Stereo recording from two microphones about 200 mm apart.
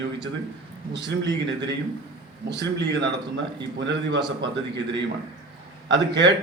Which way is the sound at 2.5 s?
60° right (ahead or behind).